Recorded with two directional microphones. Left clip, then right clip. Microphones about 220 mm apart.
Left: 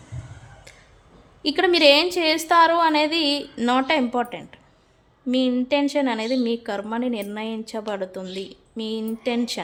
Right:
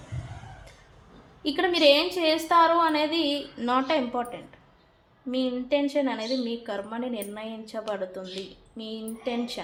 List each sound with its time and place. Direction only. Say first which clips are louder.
1.4 s a woman's voice: left 5 dB; 45° left (ahead or behind)